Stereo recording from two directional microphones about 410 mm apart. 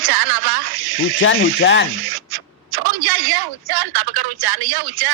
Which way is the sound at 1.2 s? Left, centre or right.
Left.